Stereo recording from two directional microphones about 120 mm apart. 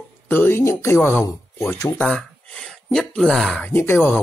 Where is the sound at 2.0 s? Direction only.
5° left (ahead or behind).